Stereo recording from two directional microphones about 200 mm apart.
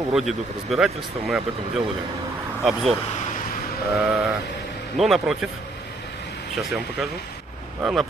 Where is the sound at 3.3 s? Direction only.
40° left (ahead or behind).